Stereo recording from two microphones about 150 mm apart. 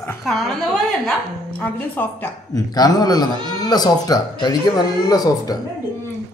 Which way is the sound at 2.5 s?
25° left (ahead or behind).